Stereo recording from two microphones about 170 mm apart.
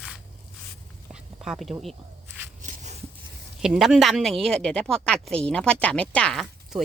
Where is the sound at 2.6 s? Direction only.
45° right (ahead or behind).